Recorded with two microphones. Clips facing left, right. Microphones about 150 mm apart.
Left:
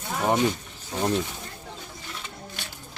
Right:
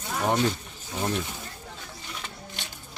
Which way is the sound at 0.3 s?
15° left (ahead or behind).